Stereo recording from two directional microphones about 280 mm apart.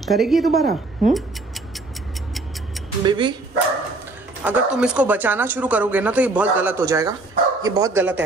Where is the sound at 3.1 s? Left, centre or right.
Centre.